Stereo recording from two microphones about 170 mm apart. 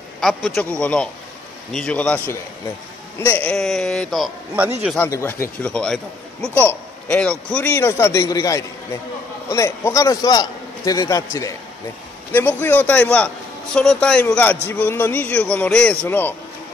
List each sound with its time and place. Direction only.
0.2 s a man's voice: centre (ahead or behind)
3.4 s a man's voice: centre (ahead or behind)
4.9 s a man's voice: 15° left (ahead or behind)
12.3 s a man's voice: 10° left (ahead or behind)